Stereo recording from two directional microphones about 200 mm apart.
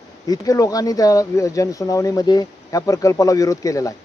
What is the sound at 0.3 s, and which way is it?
Speech, 15° left (ahead or behind).